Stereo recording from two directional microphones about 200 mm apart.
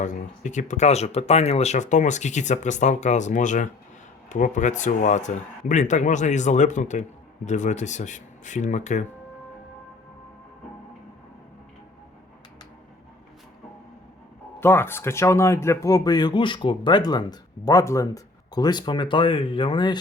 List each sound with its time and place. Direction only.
0.0 s speech: 40° left (ahead or behind)
14.6 s speech: 10° left (ahead or behind)